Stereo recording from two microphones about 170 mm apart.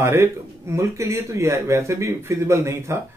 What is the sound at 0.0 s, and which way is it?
A man's voice, 15° right (ahead or behind).